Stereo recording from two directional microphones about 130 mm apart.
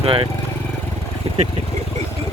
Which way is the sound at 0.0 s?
45° right (ahead or behind).